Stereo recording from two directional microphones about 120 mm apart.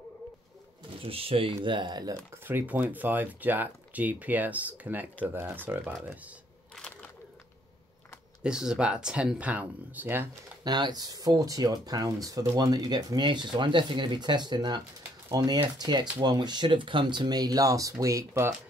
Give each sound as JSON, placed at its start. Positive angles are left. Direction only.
{"t": 1.0, "sound": "speech", "side_deg": -50}
{"t": 2.4, "sound": "speech", "side_deg": -15}
{"t": 6.7, "sound": "a sound", "side_deg": 5}
{"t": 8.4, "sound": "speech", "side_deg": -5}
{"t": 10.6, "sound": "speech", "side_deg": -35}